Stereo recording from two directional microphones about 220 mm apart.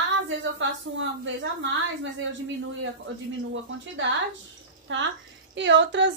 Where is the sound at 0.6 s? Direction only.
55° right (ahead or behind).